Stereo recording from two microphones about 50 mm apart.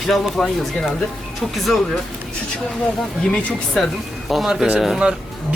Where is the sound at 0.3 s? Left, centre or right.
Centre.